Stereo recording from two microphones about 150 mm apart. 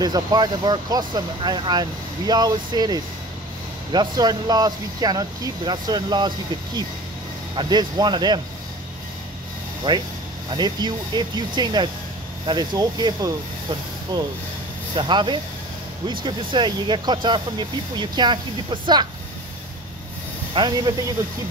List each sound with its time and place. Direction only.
0.0 s speech: 25° right (ahead or behind)
9.9 s speech: 30° right (ahead or behind)
20.5 s speech: 30° right (ahead or behind)